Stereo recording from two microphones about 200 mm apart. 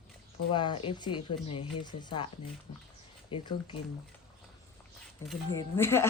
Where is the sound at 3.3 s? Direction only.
25° left (ahead or behind).